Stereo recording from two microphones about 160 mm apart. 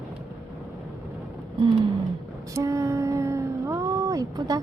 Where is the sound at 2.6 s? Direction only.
20° right (ahead or behind).